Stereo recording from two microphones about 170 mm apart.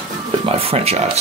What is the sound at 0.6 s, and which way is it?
Speech, 35° right (ahead or behind).